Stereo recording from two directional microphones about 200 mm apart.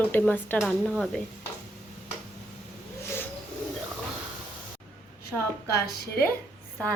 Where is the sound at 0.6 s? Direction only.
Centre (ahead or behind).